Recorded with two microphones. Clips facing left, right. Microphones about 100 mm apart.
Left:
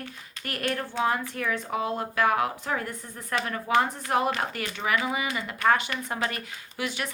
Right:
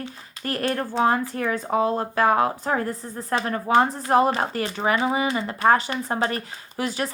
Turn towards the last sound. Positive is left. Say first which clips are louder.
# right 5 dB
turn(degrees=-35)  # may be behind; listen again after turning